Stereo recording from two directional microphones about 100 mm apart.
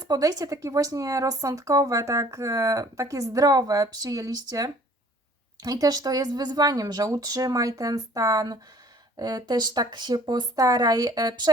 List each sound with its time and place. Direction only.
0.0 s speech: 40° right (ahead or behind)